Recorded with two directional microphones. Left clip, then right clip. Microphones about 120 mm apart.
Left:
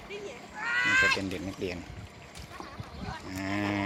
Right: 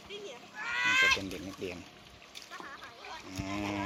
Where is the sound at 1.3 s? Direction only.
5° right (ahead or behind).